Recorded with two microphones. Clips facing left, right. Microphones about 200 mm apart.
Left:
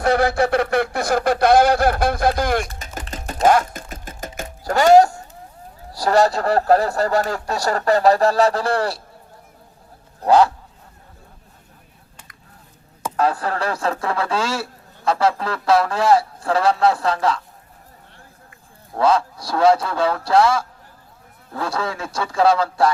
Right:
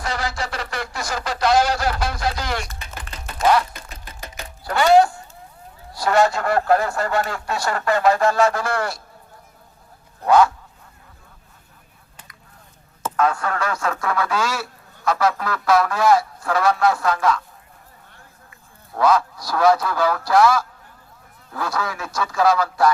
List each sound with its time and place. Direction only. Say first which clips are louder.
0.0 s speech: left 10 dB; 60° left (ahead or behind)
3.2 s sewing machine: left 2 dB; 45° left (ahead or behind)
4.4 s music: left 3 dB; 45° left (ahead or behind)
5.9 s speech: left 2 dB; 35° left (ahead or behind)
10.2 s speech: left 1 dB; 35° left (ahead or behind)
13.1 s speech: left 1 dB; 35° left (ahead or behind)
18.9 s a man's voice: even; 30° left (ahead or behind)